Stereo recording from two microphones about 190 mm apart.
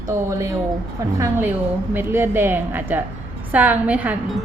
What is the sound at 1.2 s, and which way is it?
Speech, 15° right (ahead or behind).